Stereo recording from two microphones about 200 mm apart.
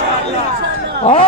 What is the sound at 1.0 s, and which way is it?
Speech, 25° left (ahead or behind).